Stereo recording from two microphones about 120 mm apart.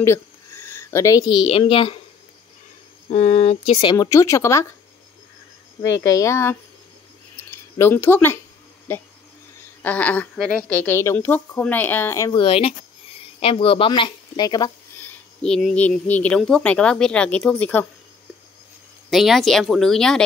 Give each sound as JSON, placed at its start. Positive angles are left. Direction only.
{"t": 0.0, "sound": "a sound", "side_deg": 20}
{"t": 1.7, "sound": "speech", "side_deg": 50}
{"t": 3.1, "sound": "speech", "side_deg": 65}
{"t": 3.9, "sound": "speech", "side_deg": 30}
{"t": 5.8, "sound": "speech", "side_deg": 30}
{"t": 7.7, "sound": "speech", "side_deg": 20}
{"t": 10.7, "sound": "speech", "side_deg": 15}
{"t": 12.3, "sound": "speech", "side_deg": 45}
{"t": 15.4, "sound": "speech", "side_deg": 5}
{"t": 19.0, "sound": "speech", "side_deg": 0}